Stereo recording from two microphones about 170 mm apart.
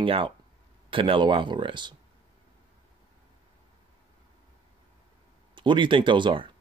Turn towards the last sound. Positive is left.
turn(degrees=-30)  # may be behind; listen again after turning